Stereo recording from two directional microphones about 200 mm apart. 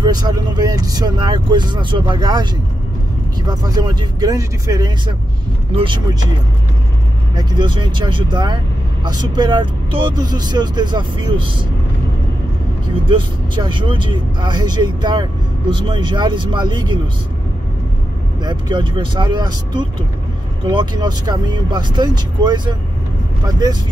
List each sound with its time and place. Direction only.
0.0 s speech: 20° right (ahead or behind)
3.4 s speech: 20° right (ahead or behind)
7.3 s speech: 25° right (ahead or behind)
13.0 s speech: 25° right (ahead or behind)
18.4 s speech: 20° right (ahead or behind)